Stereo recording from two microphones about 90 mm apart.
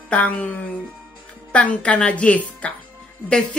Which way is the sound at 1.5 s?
15° left (ahead or behind).